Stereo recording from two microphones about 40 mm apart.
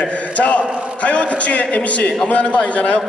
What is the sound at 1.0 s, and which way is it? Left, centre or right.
A man's voice, left.